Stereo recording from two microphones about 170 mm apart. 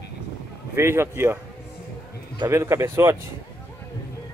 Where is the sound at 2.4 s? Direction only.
15° right (ahead or behind).